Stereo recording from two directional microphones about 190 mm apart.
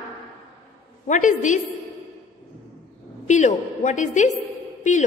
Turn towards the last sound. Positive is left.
turn(degrees=40)  # may be behind; listen again after turning